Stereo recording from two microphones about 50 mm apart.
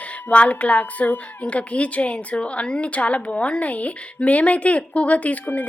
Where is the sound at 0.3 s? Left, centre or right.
Left.